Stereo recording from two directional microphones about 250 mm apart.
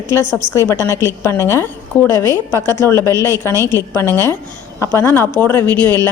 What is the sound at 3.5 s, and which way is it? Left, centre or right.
Speech, centre.